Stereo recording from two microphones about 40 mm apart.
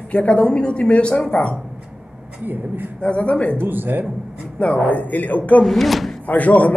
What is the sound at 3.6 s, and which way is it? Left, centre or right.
Speech, right.